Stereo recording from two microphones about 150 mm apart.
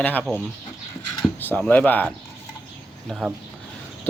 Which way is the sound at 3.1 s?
Centre (ahead or behind).